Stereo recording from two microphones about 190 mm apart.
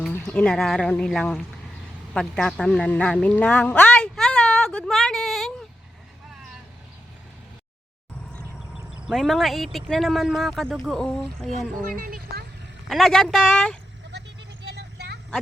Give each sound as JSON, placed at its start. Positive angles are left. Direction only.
{"t": 0.1, "sound": "speech", "side_deg": 10}
{"t": 2.1, "sound": "a sound", "side_deg": 5}
{"t": 8.3, "sound": "a sound", "side_deg": 0}
{"t": 9.0, "sound": "speech", "side_deg": 0}
{"t": 11.9, "sound": "speech", "side_deg": -45}
{"t": 12.9, "sound": "speech", "side_deg": 0}
{"t": 14.1, "sound": "vehicle", "side_deg": -60}